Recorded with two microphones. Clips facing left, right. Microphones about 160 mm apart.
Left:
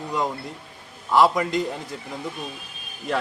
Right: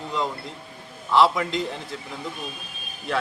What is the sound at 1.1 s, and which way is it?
Speech, 10° left (ahead or behind).